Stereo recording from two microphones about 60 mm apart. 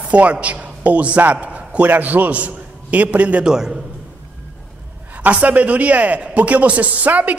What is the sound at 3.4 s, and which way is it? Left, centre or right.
Speech, centre.